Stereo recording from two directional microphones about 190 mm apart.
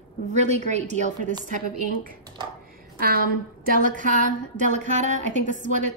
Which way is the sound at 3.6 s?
45° right (ahead or behind).